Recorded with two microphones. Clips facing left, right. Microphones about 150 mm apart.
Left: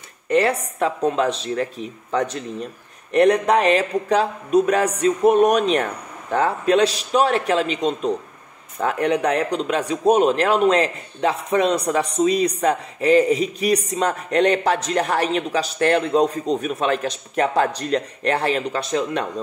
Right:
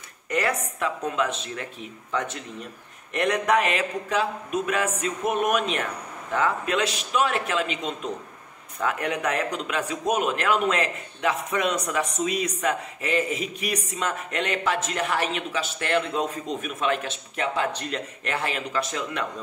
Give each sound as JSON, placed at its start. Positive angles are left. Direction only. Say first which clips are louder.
{"t": 0.3, "sound": "a woman's voice", "louder": "left 7 dB", "side_deg": 30}